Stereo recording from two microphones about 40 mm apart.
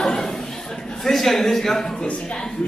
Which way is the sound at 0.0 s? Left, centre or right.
Centre.